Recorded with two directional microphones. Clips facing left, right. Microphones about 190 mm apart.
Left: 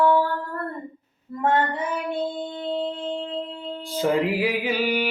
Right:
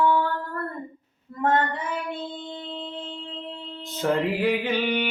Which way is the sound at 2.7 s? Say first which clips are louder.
Left 8 dB; 40° left (ahead or behind).